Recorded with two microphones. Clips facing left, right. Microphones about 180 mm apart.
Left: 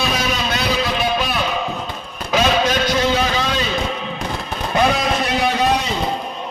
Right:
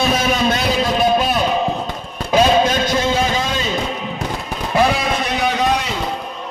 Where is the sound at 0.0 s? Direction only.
50° right (ahead or behind).